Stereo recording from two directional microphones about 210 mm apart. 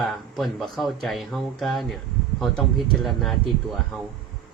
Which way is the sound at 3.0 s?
Centre (ahead or behind).